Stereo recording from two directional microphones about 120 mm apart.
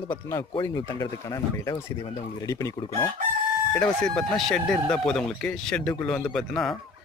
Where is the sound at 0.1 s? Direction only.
20° left (ahead or behind).